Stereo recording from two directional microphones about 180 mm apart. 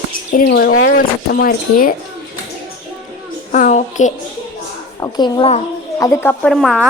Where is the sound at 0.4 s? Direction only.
55° left (ahead or behind).